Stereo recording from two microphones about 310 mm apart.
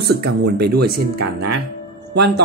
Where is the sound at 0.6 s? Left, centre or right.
Right.